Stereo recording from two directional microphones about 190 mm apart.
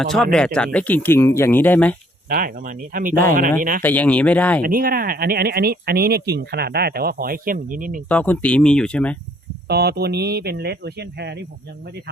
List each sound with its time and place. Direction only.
0.0 s speech: centre (ahead or behind)
2.3 s speech: 45° right (ahead or behind)
3.8 s speech: 10° left (ahead or behind)
4.6 s speech: 50° right (ahead or behind)
8.0 s speech: 5° left (ahead or behind)
9.6 s speech: 55° right (ahead or behind)